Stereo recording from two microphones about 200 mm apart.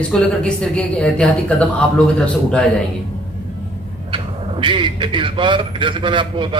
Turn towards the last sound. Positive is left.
turn(degrees=-25)  # may be behind; listen again after turning